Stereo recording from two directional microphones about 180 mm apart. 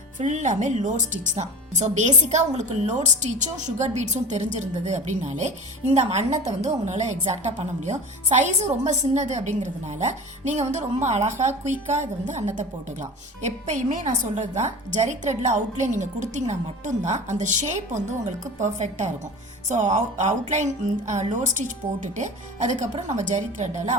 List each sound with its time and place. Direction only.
0.2 s a woman's voice: 45° right (ahead or behind)